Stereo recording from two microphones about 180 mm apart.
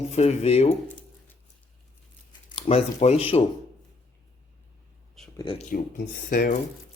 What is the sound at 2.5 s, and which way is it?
Speech, 35° left (ahead or behind).